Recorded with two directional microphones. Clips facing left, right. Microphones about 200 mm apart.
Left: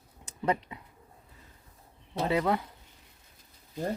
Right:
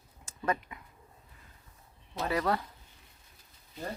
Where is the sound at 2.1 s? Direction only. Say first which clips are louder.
Left 3 dB; 25° left (ahead or behind).